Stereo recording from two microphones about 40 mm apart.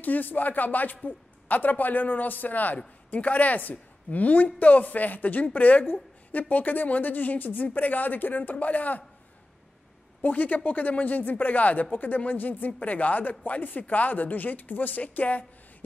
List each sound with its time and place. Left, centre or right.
0.0 s speech: left
10.2 s speech: left